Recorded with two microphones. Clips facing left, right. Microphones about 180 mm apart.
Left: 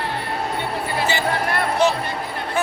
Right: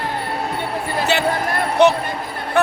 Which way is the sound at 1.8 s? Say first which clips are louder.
Right 8 dB; 65° right (ahead or behind).